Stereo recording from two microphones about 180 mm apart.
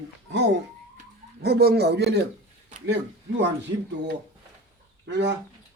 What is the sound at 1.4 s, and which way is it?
Speech, 65° right (ahead or behind).